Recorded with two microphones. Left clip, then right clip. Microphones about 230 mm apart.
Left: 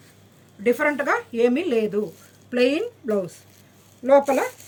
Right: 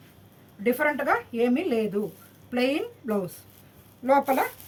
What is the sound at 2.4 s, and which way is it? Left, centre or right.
A woman's voice, right.